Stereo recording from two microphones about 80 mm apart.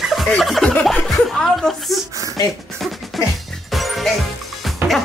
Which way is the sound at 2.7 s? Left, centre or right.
Centre.